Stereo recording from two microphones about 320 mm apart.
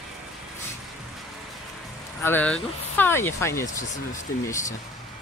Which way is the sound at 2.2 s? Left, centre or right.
Centre.